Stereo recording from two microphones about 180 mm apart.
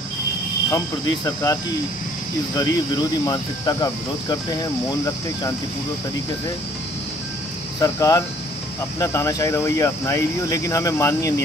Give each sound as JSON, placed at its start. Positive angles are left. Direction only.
{"t": 0.7, "sound": "speech", "side_deg": 15}
{"t": 2.5, "sound": "cricket", "side_deg": 20}
{"t": 7.8, "sound": "speech", "side_deg": 20}